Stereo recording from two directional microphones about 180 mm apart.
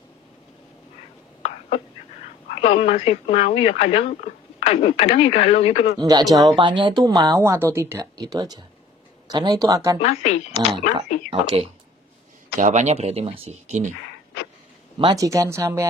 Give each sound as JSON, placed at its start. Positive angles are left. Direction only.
{"t": 2.5, "sound": "speech", "side_deg": 35}
{"t": 5.9, "sound": "speech", "side_deg": -20}
{"t": 10.0, "sound": "speech", "side_deg": 35}
{"t": 11.2, "sound": "speech", "side_deg": -35}
{"t": 15.1, "sound": "speech", "side_deg": -15}